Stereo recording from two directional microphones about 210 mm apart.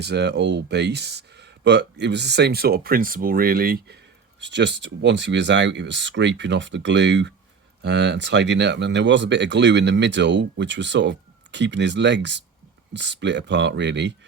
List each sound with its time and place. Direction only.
0.0 s speech: 55° right (ahead or behind)